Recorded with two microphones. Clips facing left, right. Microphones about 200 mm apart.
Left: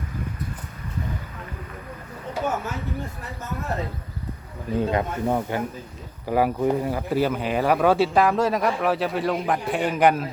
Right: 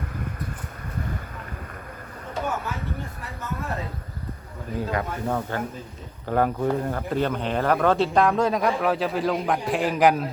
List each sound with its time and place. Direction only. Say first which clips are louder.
4.8 s speech: left 4 dB; 20° left (ahead or behind); by 10.3 s centre (ahead or behind)